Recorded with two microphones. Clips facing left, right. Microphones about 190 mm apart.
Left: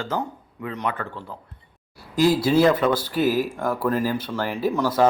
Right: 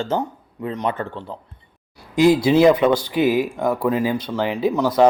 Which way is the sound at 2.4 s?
15° right (ahead or behind).